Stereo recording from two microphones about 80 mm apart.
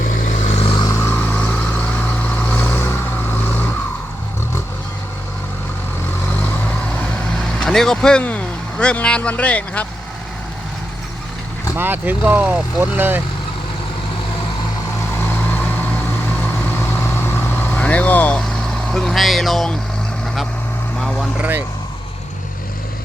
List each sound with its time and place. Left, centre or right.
0.9 s vehicle: left
1.1 s vehicle: centre
2.7 s vehicle: left
7.5 s speech: centre
8.2 s vehicle: centre
9.3 s speech: centre
11.8 s speech: right
15.2 s vehicle: left
18.3 s vehicle: centre
21.0 s vehicle: centre
21.3 s speech: right